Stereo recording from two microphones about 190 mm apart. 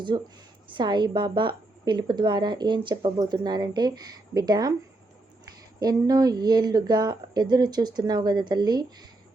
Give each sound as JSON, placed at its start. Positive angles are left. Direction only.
{"t": 0.1, "sound": "a woman's voice", "side_deg": -25}
{"t": 5.8, "sound": "a woman's voice", "side_deg": -20}